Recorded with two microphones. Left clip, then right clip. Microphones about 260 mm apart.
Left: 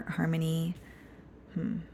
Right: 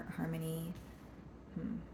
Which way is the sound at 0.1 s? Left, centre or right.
Left.